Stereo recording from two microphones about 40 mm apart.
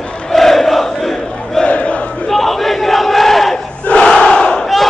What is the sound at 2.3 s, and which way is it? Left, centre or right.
Battle cry, centre.